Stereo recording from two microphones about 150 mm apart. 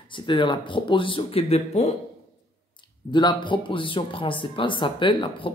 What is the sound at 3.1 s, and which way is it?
A woman's voice, 30° left (ahead or behind).